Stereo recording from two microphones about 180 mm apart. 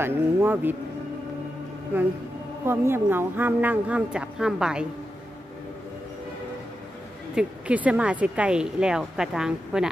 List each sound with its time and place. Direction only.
0.0 s a woman's voice: 10° right (ahead or behind)
2.6 s a woman's voice: 15° right (ahead or behind)
7.3 s speech: 5° right (ahead or behind)